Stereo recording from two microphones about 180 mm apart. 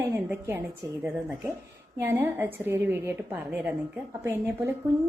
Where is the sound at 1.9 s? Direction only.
15° right (ahead or behind).